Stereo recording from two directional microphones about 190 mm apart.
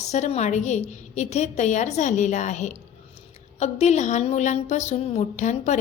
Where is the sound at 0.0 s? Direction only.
35° left (ahead or behind).